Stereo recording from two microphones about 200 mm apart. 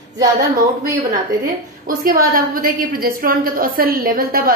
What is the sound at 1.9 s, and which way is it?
A woman's voice, 45° right (ahead or behind).